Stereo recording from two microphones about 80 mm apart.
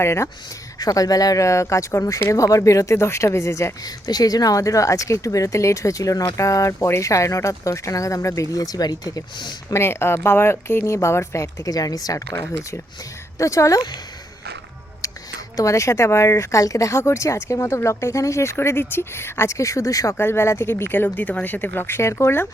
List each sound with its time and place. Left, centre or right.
0.0 s speech: left
0.8 s speech: left
3.8 s speech: left
6.7 s speech: left
9.7 s speech: left
15.5 s speech: left
20.1 s speech: left